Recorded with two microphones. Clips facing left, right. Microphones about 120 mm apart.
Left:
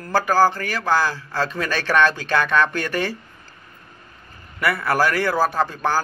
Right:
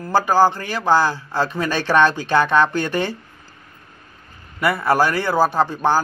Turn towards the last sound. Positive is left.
turn(degrees=-20)  # may be behind; listen again after turning